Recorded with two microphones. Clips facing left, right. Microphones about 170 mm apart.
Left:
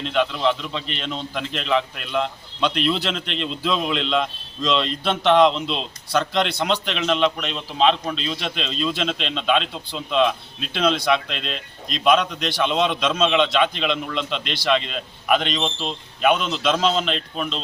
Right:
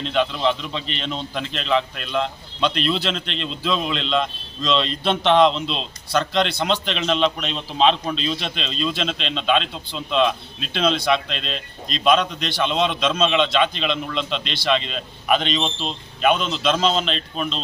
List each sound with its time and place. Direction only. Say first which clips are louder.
0.0 s a man's voice: even; 10° left (ahead or behind)